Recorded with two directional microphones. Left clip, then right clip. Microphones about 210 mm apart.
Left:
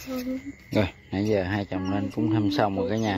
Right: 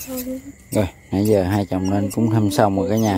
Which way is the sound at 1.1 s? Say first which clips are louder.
Right 8 dB; 35° right (ahead or behind).